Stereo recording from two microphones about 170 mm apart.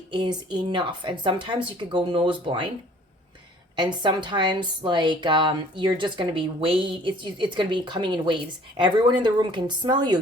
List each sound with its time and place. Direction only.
0.1 s a woman's voice: 25° right (ahead or behind)
3.8 s a woman's voice: 25° right (ahead or behind)